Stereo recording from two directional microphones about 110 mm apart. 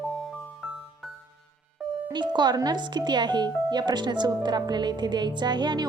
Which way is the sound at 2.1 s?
40° right (ahead or behind).